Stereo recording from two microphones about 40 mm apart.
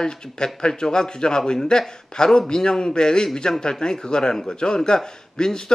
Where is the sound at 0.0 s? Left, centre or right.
Centre.